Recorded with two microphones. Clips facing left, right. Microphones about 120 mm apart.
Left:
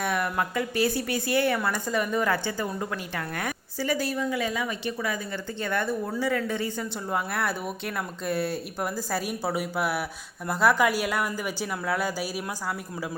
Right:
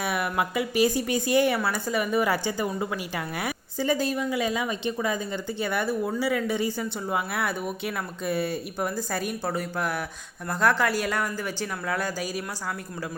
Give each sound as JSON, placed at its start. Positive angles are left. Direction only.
{"t": 0.0, "sound": "a woman's voice", "side_deg": -5}
{"t": 3.3, "sound": "a sound", "side_deg": -10}
{"t": 3.8, "sound": "a woman's voice", "side_deg": -20}
{"t": 5.5, "sound": "speech", "side_deg": -10}